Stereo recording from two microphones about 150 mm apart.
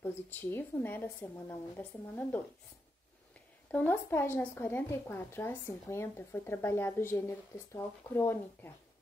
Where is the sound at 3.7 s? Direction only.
10° left (ahead or behind).